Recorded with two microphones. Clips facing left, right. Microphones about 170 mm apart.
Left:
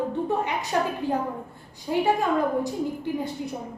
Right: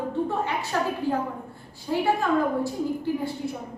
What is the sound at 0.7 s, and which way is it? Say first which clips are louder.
Speech: left 2 dB; 20° left (ahead or behind).